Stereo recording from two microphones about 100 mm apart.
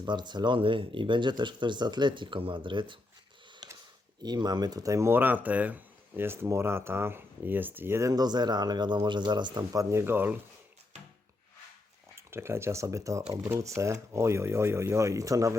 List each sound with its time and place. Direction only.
0.0 s speech: 50° right (ahead or behind)
4.2 s speech: 45° right (ahead or behind); by 8.1 s 25° right (ahead or behind)
8.1 s speech: 45° right (ahead or behind)
9.9 s speech: 25° right (ahead or behind)
12.1 s speech: 25° right (ahead or behind)